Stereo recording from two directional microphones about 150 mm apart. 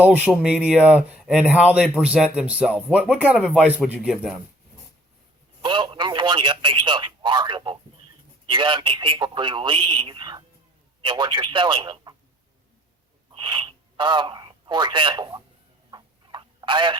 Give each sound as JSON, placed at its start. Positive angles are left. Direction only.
{"t": 0.0, "sound": "a man's voice", "side_deg": -10}
{"t": 5.6, "sound": "speech", "side_deg": -30}
{"t": 13.3, "sound": "speech", "side_deg": -30}
{"t": 15.9, "sound": "telephone", "side_deg": -30}